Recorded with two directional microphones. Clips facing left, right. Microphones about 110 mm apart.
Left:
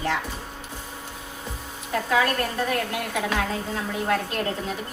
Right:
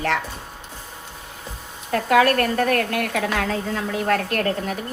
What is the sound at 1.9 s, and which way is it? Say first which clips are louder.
A woman's voice: right 6 dB; 70° right (ahead or behind).